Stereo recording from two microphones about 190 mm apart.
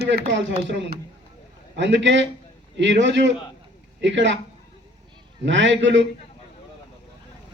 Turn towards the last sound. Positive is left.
turn(degrees=-75)  # may be behind; listen again after turning